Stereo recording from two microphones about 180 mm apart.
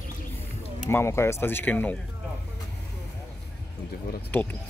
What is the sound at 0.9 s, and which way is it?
Speech, 15° left (ahead or behind).